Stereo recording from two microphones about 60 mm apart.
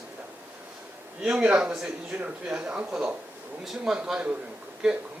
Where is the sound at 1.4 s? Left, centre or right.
Right.